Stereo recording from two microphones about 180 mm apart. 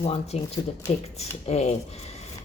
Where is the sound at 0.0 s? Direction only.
35° left (ahead or behind).